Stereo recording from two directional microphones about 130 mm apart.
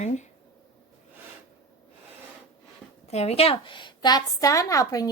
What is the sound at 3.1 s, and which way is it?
A woman's voice, 55° left (ahead or behind).